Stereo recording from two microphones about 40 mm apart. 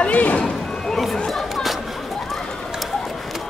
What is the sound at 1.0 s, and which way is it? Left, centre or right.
Chatter, centre.